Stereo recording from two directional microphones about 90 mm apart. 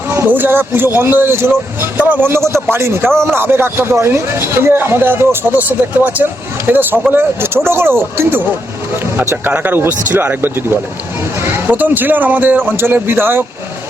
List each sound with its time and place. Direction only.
0.1 s speech: 25° right (ahead or behind)
3.1 s speech: 5° left (ahead or behind)
3.3 s speech: 25° right (ahead or behind)